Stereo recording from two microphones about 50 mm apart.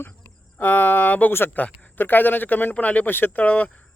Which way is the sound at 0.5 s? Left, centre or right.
Left.